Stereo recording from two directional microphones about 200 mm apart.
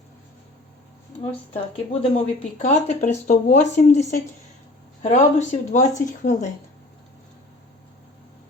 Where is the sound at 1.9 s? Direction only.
30° left (ahead or behind).